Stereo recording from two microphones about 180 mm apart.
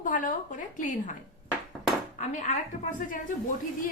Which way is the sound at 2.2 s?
45° left (ahead or behind).